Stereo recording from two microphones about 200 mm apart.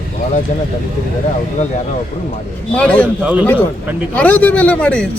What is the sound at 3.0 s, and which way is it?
A man's voice, 5° right (ahead or behind).